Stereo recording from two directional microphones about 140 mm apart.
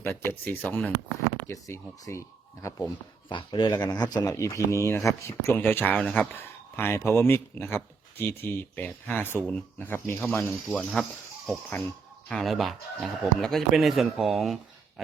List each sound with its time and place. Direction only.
0.0 s speech: 15° left (ahead or behind)
3.2 s speech: 35° left (ahead or behind); by 11.9 s 10° left (ahead or behind)
12.3 s speech: centre (ahead or behind)